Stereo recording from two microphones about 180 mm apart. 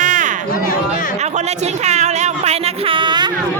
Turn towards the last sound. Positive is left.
turn(degrees=-25)  # may be behind; listen again after turning